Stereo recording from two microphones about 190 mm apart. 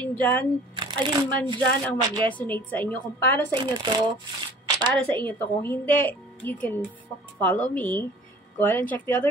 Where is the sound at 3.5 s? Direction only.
20° right (ahead or behind).